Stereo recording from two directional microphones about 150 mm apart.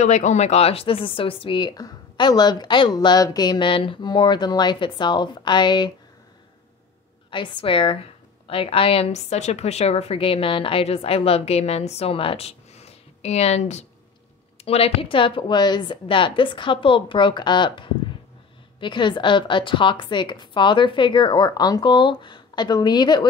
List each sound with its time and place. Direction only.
0.0 s a woman's voice: 50° left (ahead or behind); by 5.9 s 30° left (ahead or behind)
7.2 s a woman's voice: 35° left (ahead or behind)